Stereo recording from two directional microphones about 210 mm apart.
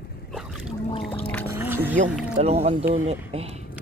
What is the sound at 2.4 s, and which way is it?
Speech, 30° right (ahead or behind).